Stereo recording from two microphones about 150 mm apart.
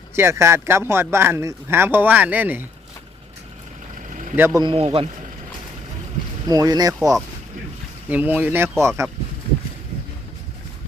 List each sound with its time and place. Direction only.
0.2 s speech: 15° right (ahead or behind)
4.1 s vehicle: 55° right (ahead or behind)
4.4 s speech: 15° right (ahead or behind)
4.6 s a man's voice: 35° right (ahead or behind)
6.5 s speech: 25° right (ahead or behind)
8.1 s speech: 10° right (ahead or behind)